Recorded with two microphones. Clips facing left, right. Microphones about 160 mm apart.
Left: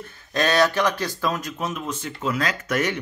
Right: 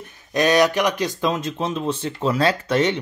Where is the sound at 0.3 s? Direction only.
15° right (ahead or behind).